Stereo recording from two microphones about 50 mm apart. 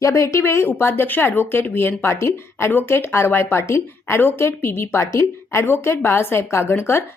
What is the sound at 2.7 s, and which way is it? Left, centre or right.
A woman's voice, left.